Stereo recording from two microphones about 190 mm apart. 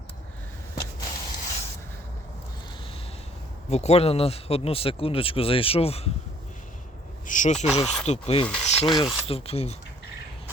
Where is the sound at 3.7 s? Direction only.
35° left (ahead or behind).